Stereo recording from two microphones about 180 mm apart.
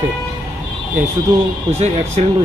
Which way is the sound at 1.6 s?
40° right (ahead or behind).